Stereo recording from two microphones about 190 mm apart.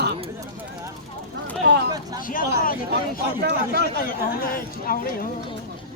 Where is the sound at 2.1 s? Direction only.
45° left (ahead or behind).